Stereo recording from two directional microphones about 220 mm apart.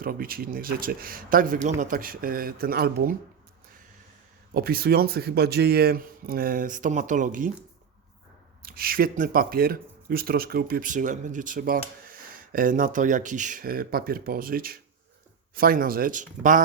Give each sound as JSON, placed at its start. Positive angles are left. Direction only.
{"t": 0.0, "sound": "speech", "side_deg": -40}
{"t": 4.5, "sound": "speech", "side_deg": -45}
{"t": 8.6, "sound": "speech", "side_deg": -40}